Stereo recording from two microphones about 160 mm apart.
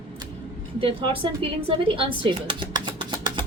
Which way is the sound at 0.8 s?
35° right (ahead or behind).